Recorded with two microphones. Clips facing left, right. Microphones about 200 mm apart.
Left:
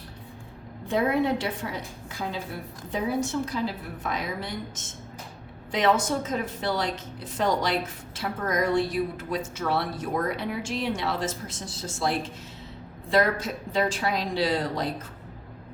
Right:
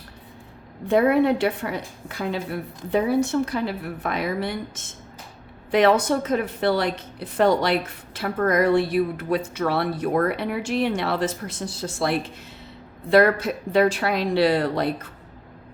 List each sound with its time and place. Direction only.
0.9 s a woman's voice: 60° right (ahead or behind)